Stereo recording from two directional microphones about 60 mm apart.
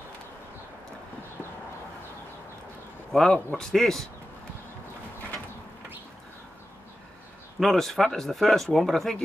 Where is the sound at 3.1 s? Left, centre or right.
Centre.